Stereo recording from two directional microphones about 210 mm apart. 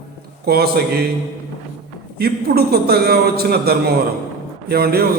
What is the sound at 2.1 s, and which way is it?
A man's voice, 50° right (ahead or behind).